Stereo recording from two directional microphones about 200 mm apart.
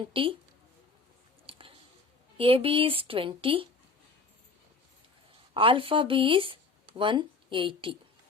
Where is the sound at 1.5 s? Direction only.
25° right (ahead or behind).